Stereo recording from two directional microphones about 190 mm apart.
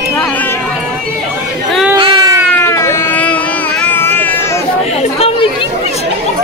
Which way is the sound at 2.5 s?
15° left (ahead or behind).